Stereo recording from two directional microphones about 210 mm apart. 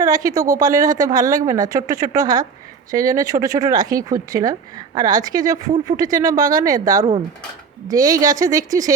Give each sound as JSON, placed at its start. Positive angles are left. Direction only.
{"t": 0.0, "sound": "a woman's voice", "side_deg": -15}